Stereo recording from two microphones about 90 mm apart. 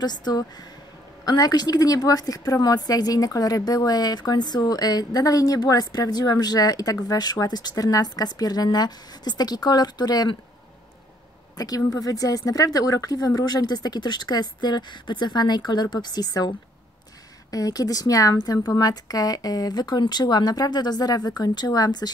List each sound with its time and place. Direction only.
0.0 s a woman's voice: 50° left (ahead or behind)
11.5 s a woman's voice: 45° left (ahead or behind)